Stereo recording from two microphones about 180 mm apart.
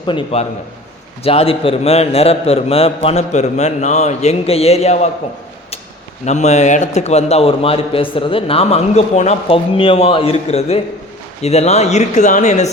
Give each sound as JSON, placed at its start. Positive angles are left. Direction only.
{"t": 0.0, "sound": "a man's voice", "side_deg": 25}
{"t": 6.2, "sound": "a man's voice", "side_deg": 40}